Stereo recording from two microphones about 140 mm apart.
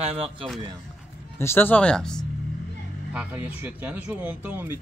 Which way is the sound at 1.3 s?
15° left (ahead or behind).